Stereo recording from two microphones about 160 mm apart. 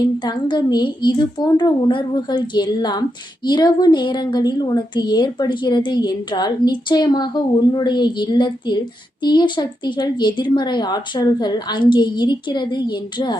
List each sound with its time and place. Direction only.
0.0 s a woman's voice: 25° left (ahead or behind)